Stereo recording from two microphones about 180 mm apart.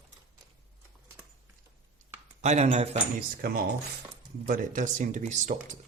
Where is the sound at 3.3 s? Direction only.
55° right (ahead or behind).